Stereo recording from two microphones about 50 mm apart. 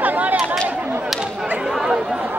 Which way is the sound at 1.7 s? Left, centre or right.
Centre.